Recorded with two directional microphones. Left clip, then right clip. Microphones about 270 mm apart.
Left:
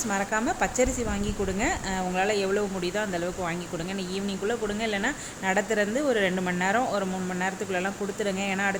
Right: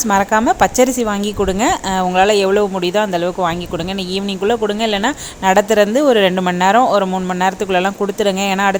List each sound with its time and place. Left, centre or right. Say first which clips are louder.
0.1 s speech: right 14 dB; right